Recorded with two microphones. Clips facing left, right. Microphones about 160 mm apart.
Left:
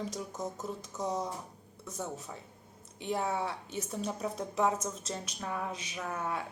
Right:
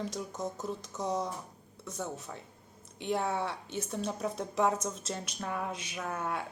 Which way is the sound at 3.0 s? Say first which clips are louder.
Right 1 dB; 5° left (ahead or behind).